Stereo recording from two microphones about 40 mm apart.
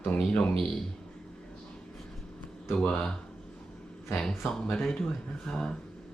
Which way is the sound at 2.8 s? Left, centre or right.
Left.